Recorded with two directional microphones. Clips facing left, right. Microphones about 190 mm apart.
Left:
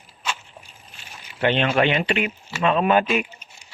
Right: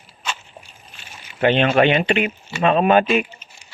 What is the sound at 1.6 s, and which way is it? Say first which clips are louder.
Speech: right 5 dB; 55° right (ahead or behind).